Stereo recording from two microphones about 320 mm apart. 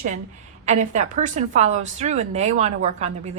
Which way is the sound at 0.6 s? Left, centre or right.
Right.